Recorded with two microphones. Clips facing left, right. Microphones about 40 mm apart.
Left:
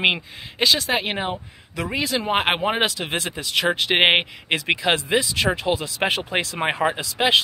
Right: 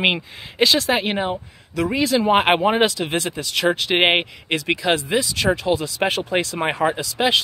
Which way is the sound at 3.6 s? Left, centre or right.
Left.